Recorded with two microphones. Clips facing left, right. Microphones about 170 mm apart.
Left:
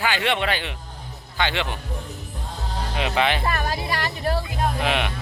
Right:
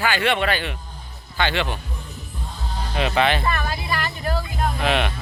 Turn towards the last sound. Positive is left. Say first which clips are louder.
# right 2 dB
turn(degrees=10)  # may be behind; listen again after turning